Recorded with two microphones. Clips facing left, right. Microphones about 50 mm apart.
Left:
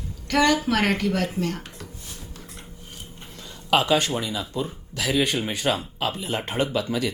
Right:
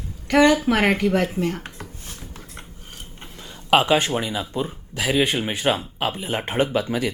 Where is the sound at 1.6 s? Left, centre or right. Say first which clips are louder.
Right 3 dB; right.